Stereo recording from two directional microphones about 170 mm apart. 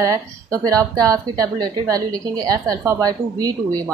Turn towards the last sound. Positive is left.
turn(degrees=-20)  # may be behind; listen again after turning